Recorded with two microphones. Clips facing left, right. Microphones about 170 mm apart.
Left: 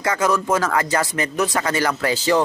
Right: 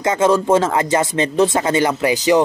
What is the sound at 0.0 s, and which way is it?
Speech, 25° right (ahead or behind).